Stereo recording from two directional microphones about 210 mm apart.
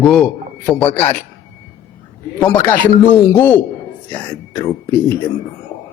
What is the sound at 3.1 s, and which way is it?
A man's voice, 5° left (ahead or behind).